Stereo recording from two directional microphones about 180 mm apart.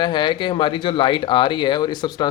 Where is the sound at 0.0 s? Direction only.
25° left (ahead or behind).